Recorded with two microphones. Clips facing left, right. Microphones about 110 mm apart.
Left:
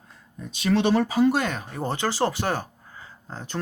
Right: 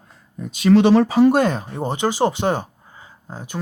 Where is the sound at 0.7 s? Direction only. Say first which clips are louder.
Right 8 dB; 90° right.